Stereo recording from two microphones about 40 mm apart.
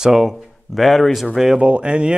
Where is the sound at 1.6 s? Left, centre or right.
Right.